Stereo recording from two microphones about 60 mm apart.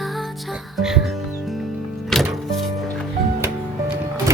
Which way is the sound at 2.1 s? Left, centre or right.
Centre.